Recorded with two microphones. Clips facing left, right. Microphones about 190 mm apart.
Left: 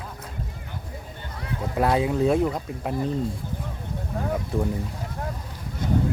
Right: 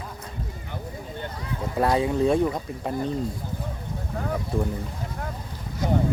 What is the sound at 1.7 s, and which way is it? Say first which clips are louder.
Speech: even; centre (ahead or behind).